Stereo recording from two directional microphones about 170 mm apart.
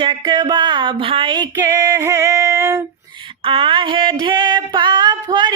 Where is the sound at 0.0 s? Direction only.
25° right (ahead or behind).